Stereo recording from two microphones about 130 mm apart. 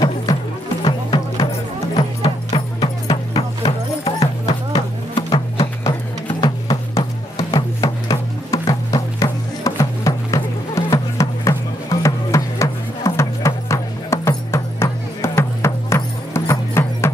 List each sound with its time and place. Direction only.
0.8 s music: 35° left (ahead or behind)
3.1 s music: 50° left (ahead or behind)
4.7 s music: 40° left (ahead or behind)
7.5 s music: 25° left (ahead or behind)